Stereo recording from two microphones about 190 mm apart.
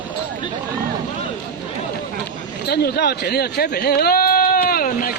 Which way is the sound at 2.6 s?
60° left (ahead or behind).